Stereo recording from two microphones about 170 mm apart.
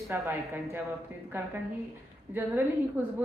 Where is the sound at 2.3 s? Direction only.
10° right (ahead or behind).